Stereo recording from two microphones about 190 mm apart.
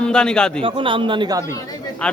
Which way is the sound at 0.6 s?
25° right (ahead or behind).